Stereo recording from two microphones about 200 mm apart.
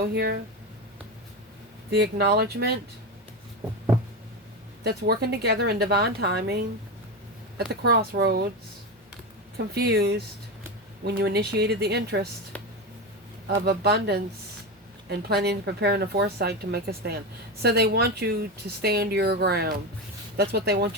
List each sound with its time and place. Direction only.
0.1 s speech: 55° right (ahead or behind)
1.9 s speech: 55° right (ahead or behind)
4.8 s speech: 55° right (ahead or behind)
7.8 s speech: 50° right (ahead or behind)
9.6 s a woman's voice: 50° right (ahead or behind)
12.5 s a sound: 5° left (ahead or behind)
13.5 s a woman's voice: 55° right (ahead or behind)